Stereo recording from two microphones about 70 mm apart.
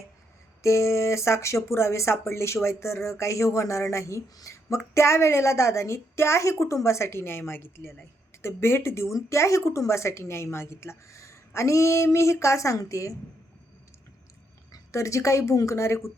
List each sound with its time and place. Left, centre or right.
0.6 s a woman's voice: left
14.7 s speech: left